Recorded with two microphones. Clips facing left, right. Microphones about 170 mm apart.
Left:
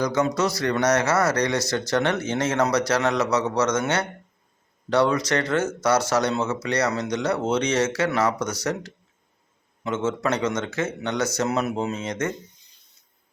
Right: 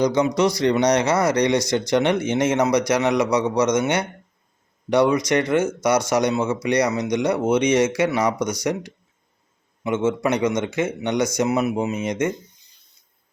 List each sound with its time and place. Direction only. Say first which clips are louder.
0.0 s speech: right 4 dB; 15° right (ahead or behind)